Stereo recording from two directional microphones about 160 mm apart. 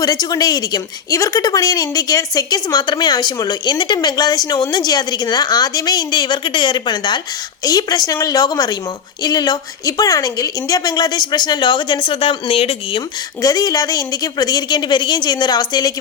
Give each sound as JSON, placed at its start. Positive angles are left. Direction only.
{"t": 0.0, "sound": "a woman's voice", "side_deg": 25}
{"t": 13.4, "sound": "a woman's voice", "side_deg": 25}